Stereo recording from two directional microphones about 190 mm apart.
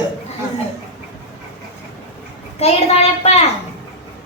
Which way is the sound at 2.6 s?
35° left (ahead or behind).